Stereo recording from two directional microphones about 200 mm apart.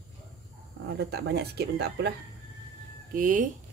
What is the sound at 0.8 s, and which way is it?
Speech, 55° right (ahead or behind).